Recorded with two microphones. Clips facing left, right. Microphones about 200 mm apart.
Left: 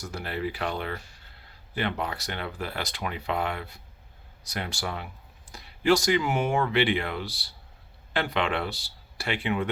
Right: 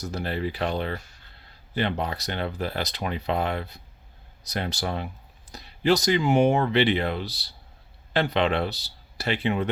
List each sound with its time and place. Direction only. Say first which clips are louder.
0.0 s speech: right 3 dB; 25° right (ahead or behind)